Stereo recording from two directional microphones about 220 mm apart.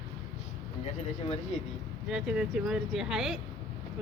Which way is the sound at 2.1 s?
5° right (ahead or behind).